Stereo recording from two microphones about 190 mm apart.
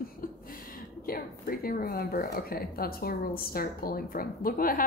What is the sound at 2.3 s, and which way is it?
A woman's voice, 50° left (ahead or behind).